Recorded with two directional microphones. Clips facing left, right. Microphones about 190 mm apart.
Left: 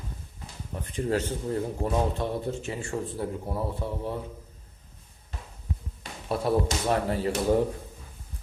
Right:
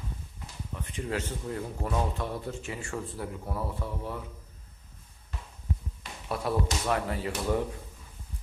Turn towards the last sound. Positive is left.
turn(degrees=35)  # may be behind; listen again after turning